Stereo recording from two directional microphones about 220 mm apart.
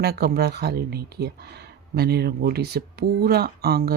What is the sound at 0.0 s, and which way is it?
Speech, 45° right (ahead or behind).